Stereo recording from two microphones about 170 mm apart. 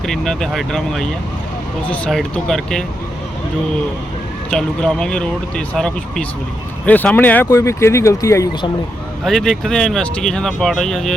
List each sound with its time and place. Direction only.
0.0 s speech: centre (ahead or behind)
4.5 s speech: 5° left (ahead or behind)
9.2 s speech: centre (ahead or behind)